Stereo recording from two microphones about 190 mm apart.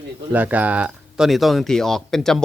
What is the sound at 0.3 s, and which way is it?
A man's voice, 10° right (ahead or behind).